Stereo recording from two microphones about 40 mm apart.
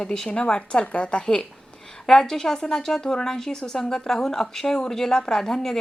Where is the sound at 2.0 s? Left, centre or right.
Centre.